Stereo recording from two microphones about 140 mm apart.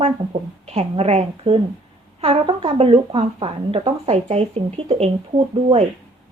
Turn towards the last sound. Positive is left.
turn(degrees=-45)  # may be behind; listen again after turning